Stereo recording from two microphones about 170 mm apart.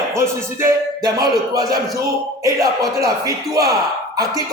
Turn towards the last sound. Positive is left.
turn(degrees=-20)  # may be behind; listen again after turning